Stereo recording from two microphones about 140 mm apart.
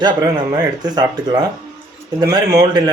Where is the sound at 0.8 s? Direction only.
30° right (ahead or behind).